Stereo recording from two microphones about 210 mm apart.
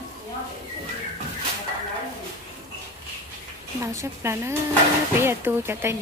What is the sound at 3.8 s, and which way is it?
Speech, 15° right (ahead or behind).